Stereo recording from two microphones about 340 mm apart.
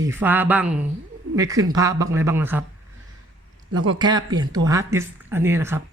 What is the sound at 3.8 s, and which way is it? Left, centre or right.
Speech, centre.